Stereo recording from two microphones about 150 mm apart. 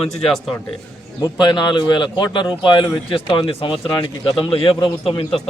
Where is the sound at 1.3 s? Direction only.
30° left (ahead or behind).